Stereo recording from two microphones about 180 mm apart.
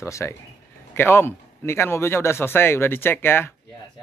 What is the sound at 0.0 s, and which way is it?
A man's voice, 15° left (ahead or behind).